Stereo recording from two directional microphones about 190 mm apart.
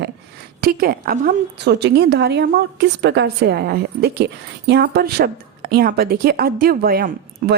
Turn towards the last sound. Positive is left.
turn(degrees=-50)  # may be behind; listen again after turning